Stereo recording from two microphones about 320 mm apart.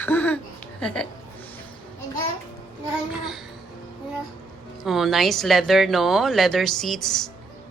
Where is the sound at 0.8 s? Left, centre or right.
Centre.